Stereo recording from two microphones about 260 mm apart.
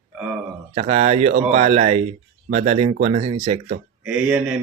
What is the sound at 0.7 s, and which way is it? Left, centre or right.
Speech, right.